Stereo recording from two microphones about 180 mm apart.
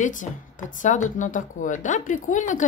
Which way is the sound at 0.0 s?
45° left (ahead or behind).